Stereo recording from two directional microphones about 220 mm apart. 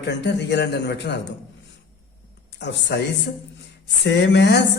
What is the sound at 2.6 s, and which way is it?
Speech, 50° left (ahead or behind).